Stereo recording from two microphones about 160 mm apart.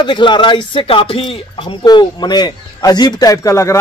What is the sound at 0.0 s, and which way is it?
A man's voice, 30° left (ahead or behind).